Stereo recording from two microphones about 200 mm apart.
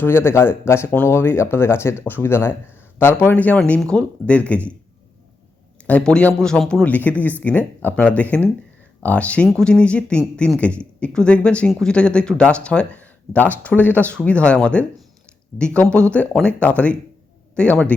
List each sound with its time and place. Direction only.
0.0 s speech: 10° left (ahead or behind)
5.9 s a man's voice: 5° left (ahead or behind)